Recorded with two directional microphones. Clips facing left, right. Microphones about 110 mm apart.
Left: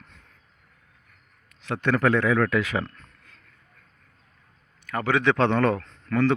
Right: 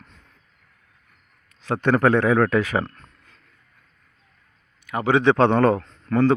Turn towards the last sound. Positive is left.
turn(degrees=-35)  # may be behind; listen again after turning